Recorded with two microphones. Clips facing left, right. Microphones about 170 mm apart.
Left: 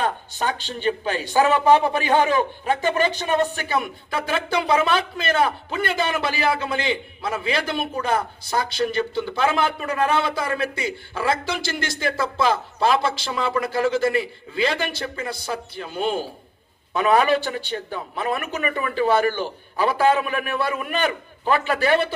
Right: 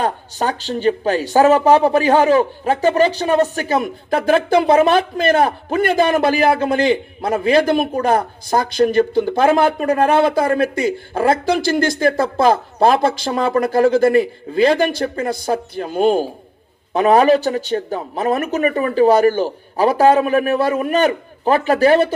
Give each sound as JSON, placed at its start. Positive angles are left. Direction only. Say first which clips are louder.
{"t": 0.0, "sound": "speech", "louder": "right 4 dB", "side_deg": -40}